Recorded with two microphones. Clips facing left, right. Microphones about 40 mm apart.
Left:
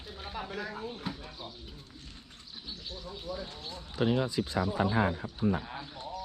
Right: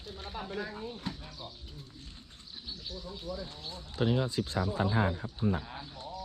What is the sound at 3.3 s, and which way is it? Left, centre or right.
Speech, left.